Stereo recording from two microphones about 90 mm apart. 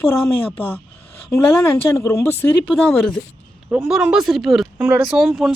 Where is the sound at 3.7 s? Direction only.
10° right (ahead or behind).